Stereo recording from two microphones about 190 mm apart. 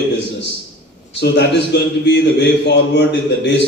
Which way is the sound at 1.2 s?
65° left (ahead or behind).